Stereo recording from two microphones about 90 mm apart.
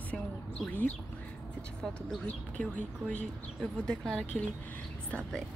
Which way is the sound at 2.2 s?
15° left (ahead or behind).